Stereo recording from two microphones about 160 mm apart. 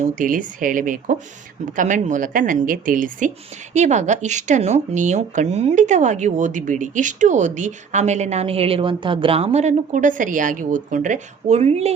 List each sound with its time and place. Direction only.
0.2 s a woman's voice: 55° right (ahead or behind); by 11.9 s 40° right (ahead or behind)